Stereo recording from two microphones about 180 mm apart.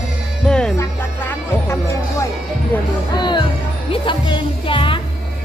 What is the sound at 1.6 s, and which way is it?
Music, 15° left (ahead or behind).